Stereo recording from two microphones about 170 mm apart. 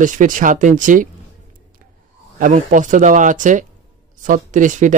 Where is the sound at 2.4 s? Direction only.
50° right (ahead or behind).